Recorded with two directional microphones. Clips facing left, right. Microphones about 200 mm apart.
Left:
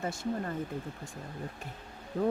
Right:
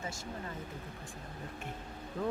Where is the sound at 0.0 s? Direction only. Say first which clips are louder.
Left 8 dB; 55° left (ahead or behind).